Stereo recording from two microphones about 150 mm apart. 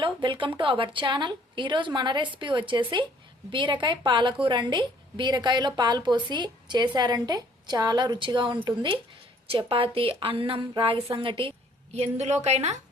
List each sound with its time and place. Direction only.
0.0 s a woman's voice: 35° right (ahead or behind)
11.9 s a woman's voice: 45° right (ahead or behind)